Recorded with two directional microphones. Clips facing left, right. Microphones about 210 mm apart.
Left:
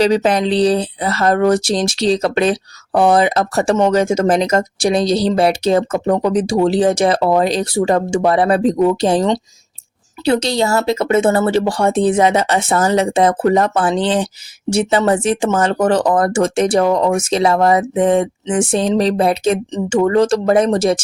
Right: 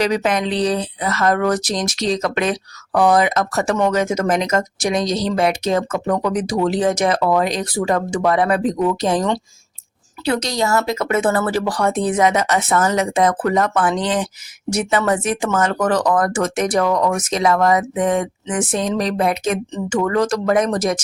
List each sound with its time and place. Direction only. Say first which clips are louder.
0.0 s speech: left 5 dB; 30° left (ahead or behind)